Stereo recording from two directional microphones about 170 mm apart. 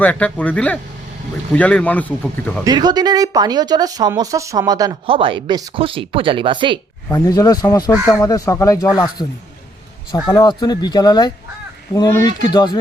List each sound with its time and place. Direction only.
0.0 s speech: 10° left (ahead or behind)
2.6 s speech: 25° right (ahead or behind)
7.1 s speech: 20° left (ahead or behind)
10.1 s speech: 25° left (ahead or behind)